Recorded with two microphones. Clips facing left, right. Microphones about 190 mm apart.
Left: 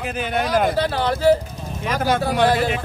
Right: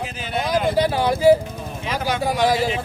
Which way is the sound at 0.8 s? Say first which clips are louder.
Right 2 dB; 10° right (ahead or behind).